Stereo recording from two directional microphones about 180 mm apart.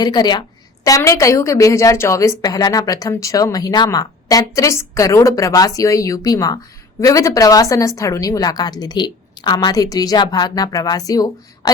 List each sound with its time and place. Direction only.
0.0 s a woman's voice: 20° left (ahead or behind)